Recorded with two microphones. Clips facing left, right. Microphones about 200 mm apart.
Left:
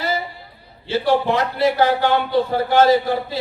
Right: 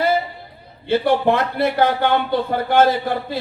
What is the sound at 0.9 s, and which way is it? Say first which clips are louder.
A man's voice: right 2 dB; 55° right (ahead or behind).